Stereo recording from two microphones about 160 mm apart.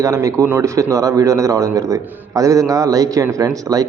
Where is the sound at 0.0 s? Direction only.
20° right (ahead or behind).